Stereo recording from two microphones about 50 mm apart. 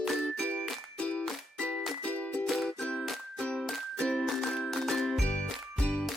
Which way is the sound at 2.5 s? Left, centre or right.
Centre.